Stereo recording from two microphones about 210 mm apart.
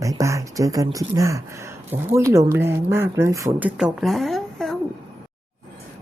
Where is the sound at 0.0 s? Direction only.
15° right (ahead or behind).